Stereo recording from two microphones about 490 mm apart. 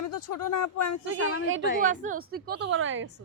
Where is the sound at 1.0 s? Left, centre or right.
Right.